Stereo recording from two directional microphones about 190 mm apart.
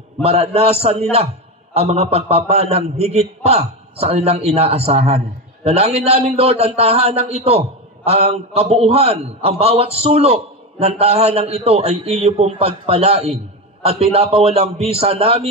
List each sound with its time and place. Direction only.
0.2 s a man's voice: 30° right (ahead or behind)